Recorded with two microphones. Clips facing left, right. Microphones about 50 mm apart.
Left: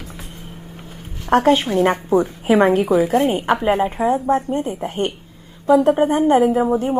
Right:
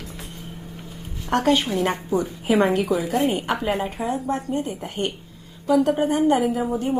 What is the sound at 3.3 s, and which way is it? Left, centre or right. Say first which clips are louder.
A woman's voice: left 6 dB; left.